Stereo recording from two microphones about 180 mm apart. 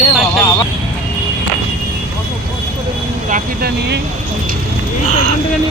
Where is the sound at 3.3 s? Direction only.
60° right (ahead or behind).